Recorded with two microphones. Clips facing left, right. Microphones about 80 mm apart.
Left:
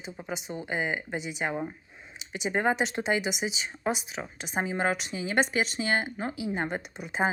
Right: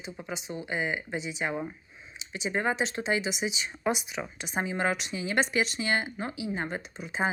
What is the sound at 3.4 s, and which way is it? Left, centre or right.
Speech, left.